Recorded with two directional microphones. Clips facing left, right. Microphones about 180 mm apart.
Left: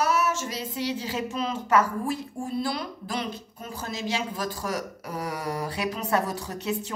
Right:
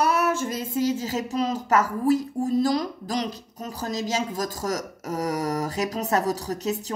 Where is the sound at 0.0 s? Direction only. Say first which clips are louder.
Right 3 dB; 60° right (ahead or behind).